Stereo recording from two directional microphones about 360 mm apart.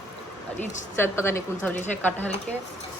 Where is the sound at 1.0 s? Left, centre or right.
Centre.